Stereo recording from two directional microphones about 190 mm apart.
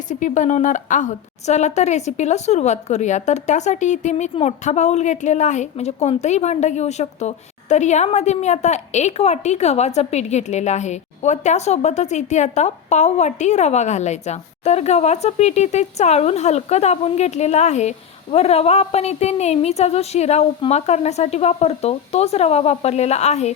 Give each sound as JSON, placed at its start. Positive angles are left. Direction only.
{"t": 0.1, "sound": "a woman's voice", "side_deg": 40}